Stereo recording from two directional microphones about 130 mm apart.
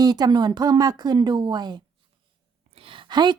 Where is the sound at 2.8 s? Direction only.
40° right (ahead or behind).